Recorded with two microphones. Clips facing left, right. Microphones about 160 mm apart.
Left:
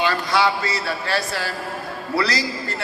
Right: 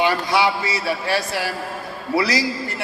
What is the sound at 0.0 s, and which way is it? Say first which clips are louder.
A man's voice: right 1 dB; 20° right (ahead or behind).